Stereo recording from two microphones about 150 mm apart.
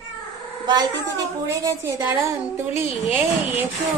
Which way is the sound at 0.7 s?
25° right (ahead or behind).